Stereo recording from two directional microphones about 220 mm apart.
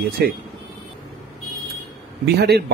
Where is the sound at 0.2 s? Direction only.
45° right (ahead or behind).